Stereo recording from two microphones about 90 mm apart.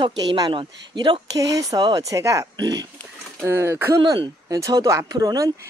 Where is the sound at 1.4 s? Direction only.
40° right (ahead or behind).